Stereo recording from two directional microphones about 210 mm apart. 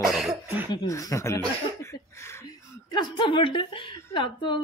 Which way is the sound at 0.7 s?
15° left (ahead or behind).